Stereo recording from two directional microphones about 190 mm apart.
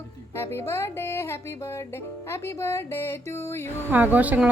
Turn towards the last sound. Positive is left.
turn(degrees=-10)  # may be behind; listen again after turning